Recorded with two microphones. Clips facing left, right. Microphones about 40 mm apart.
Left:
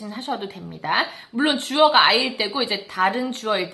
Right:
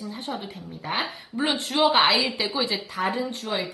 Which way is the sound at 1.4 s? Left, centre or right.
Left.